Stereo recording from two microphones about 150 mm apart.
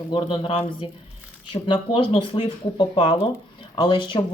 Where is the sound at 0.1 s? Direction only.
30° left (ahead or behind).